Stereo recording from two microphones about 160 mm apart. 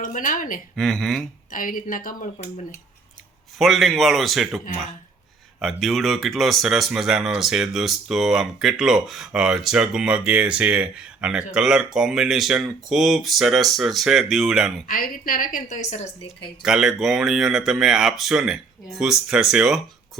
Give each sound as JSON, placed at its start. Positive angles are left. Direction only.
{"t": 0.0, "sound": "a woman's voice", "side_deg": 55}
{"t": 0.8, "sound": "speech", "side_deg": 0}
{"t": 1.5, "sound": "a woman's voice", "side_deg": 60}
{"t": 3.6, "sound": "speech", "side_deg": 0}
{"t": 14.8, "sound": "a woman's voice", "side_deg": 65}
{"t": 15.7, "sound": "a woman's voice", "side_deg": 45}
{"t": 16.6, "sound": "speech", "side_deg": -5}